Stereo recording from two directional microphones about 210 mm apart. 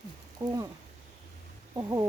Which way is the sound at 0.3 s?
15° right (ahead or behind).